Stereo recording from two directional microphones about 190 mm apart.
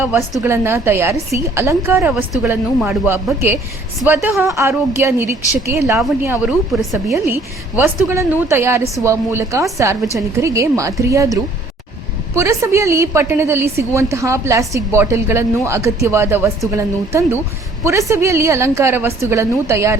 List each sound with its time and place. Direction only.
0.0 s a woman's voice: 10° right (ahead or behind)